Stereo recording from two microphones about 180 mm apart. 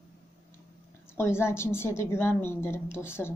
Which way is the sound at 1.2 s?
15° left (ahead or behind).